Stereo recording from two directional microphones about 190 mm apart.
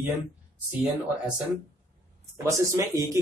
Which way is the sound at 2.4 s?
15° right (ahead or behind).